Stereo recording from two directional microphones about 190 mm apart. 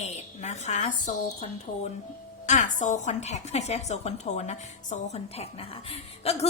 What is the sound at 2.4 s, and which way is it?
A woman's voice, 40° left (ahead or behind).